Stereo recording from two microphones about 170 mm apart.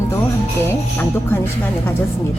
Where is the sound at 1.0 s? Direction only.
15° left (ahead or behind).